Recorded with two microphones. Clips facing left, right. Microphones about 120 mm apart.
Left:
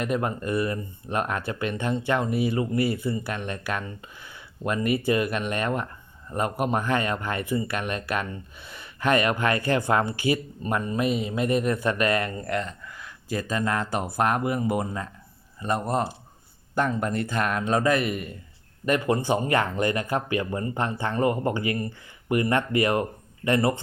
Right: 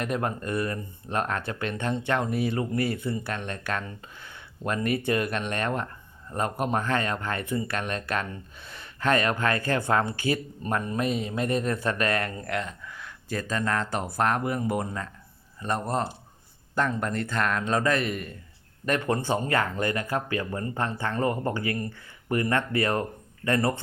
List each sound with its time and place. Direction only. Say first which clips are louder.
0.0 s a man's voice: left 2 dB; 5° left (ahead or behind)